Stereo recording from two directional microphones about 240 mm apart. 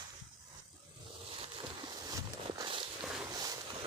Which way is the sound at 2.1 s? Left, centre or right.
Centre.